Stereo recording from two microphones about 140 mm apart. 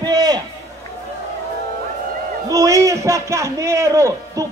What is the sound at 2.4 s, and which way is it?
A man's voice, 25° right (ahead or behind).